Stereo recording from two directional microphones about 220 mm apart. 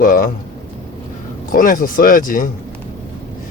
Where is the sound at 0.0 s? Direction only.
40° left (ahead or behind).